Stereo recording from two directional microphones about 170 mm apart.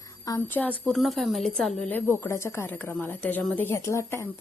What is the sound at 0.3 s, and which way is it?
Speech, 15° left (ahead or behind).